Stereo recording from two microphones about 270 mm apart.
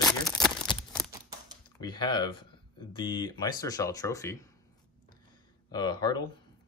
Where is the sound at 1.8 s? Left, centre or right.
Centre.